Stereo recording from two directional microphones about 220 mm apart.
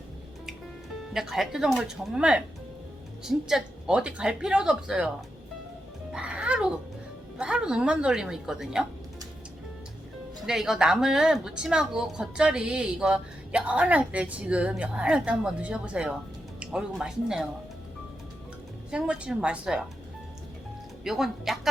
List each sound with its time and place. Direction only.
1.1 s a woman's voice: centre (ahead or behind)
6.1 s music: 5° right (ahead or behind)
7.3 s a woman's voice: 5° right (ahead or behind)
10.4 s a woman's voice: centre (ahead or behind)
18.9 s a woman's voice: 5° right (ahead or behind)
21.0 s a woman's voice: centre (ahead or behind)